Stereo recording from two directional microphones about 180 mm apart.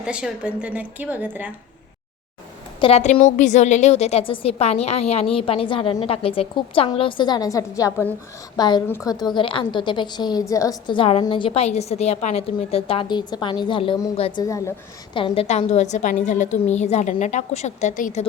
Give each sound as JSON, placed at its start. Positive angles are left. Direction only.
{"t": 0.0, "sound": "a woman's voice", "side_deg": -5}
{"t": 2.8, "sound": "a woman's voice", "side_deg": 35}
{"t": 14.4, "sound": "a woman's voice", "side_deg": 20}
{"t": 15.1, "sound": "a woman's voice", "side_deg": 30}